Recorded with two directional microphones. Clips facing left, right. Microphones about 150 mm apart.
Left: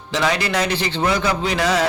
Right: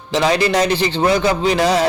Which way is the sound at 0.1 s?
30° right (ahead or behind).